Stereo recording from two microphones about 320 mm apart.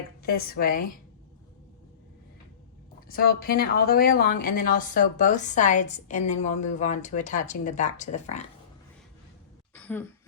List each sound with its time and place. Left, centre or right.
0.2 s speech: left
3.1 s speech: left
9.7 s a sound: centre